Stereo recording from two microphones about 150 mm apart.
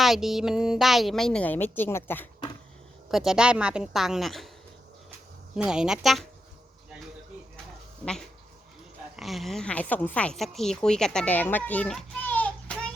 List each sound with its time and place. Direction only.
0.0 s a woman's voice: centre (ahead or behind); by 2.2 s 15° left (ahead or behind)
3.1 s a woman's voice: centre (ahead or behind)
5.5 s a woman's voice: 5° right (ahead or behind)
8.0 s a woman's voice: centre (ahead or behind)